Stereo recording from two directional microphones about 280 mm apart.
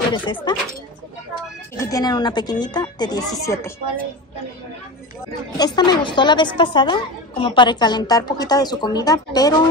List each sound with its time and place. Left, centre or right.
0.1 s speech: centre
1.8 s speech: centre
5.6 s speech: centre